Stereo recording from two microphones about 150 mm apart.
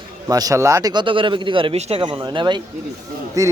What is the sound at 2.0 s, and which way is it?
Speech, 30° right (ahead or behind).